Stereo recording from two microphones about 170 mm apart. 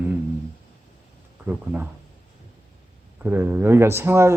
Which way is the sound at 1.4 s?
10° right (ahead or behind).